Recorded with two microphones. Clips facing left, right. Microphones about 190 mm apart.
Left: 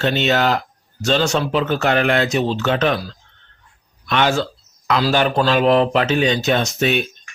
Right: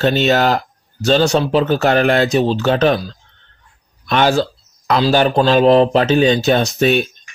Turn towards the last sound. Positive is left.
turn(degrees=-35)  # may be behind; listen again after turning